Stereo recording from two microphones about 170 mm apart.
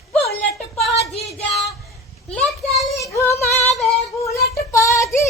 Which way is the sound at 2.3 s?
5° left (ahead or behind).